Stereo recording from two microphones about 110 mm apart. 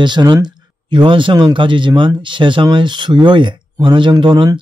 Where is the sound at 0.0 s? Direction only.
40° right (ahead or behind).